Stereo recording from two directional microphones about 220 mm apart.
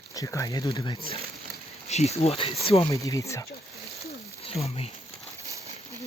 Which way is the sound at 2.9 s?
15° left (ahead or behind).